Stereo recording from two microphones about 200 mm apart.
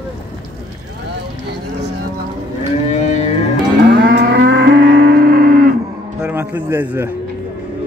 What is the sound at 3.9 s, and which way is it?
Livestock, 60° right (ahead or behind).